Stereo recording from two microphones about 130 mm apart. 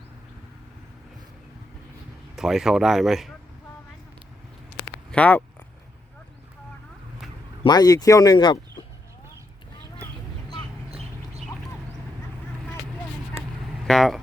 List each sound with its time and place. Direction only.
2.3 s speech: 5° right (ahead or behind)
5.1 s speech: 10° left (ahead or behind)
7.6 s speech: 30° left (ahead or behind)
13.8 s speech: centre (ahead or behind)